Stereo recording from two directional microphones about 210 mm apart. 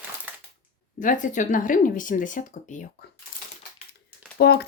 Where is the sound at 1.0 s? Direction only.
40° left (ahead or behind).